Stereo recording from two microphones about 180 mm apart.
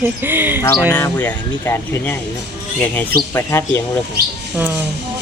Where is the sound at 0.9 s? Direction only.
10° left (ahead or behind).